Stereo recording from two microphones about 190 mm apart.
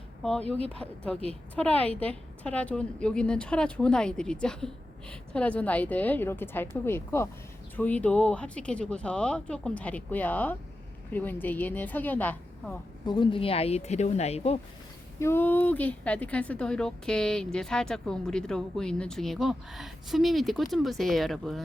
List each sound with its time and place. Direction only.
0.2 s a woman's voice: 5° left (ahead or behind)
13.1 s speech: 25° left (ahead or behind)
15.2 s speech: 10° left (ahead or behind)